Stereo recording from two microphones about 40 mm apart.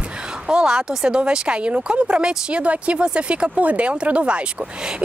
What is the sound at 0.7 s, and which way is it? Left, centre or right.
Speech, centre.